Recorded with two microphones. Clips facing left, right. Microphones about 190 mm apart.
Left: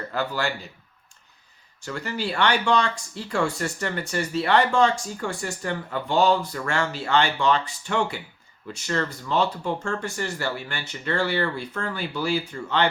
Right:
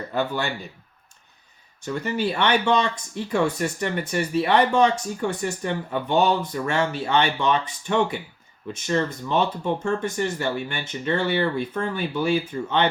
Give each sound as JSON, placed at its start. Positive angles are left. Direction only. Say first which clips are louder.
{"t": 0.1, "sound": "speech", "louder": "right 2 dB", "side_deg": -20}
{"t": 1.8, "sound": "speech", "louder": "right 5 dB", "side_deg": -20}